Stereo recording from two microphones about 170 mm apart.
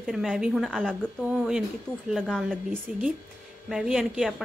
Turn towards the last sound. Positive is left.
turn(degrees=0)  # may be behind; listen again after turning